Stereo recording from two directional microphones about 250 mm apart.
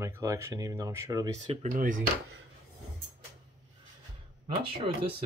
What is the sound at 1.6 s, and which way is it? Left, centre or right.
Speech, right.